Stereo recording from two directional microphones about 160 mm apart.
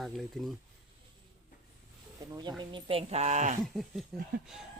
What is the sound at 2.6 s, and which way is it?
Speech, 30° right (ahead or behind).